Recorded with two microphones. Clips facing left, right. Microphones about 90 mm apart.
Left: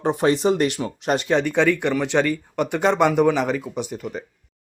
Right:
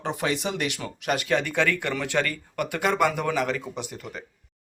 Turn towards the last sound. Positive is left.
turn(degrees=20)  # may be behind; listen again after turning